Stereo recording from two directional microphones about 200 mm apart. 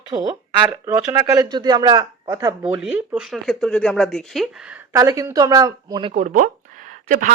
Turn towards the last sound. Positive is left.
turn(degrees=-40)  # may be behind; listen again after turning